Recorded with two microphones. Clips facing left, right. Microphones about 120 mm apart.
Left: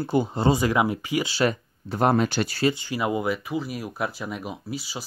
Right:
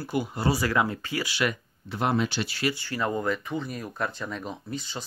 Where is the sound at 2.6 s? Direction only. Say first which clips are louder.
Left 4 dB; 20° left (ahead or behind).